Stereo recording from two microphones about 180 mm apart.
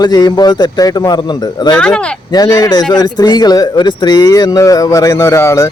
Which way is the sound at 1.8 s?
5° left (ahead or behind).